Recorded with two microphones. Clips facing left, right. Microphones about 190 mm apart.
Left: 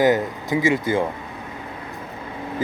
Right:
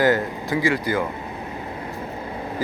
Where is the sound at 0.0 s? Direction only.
20° left (ahead or behind).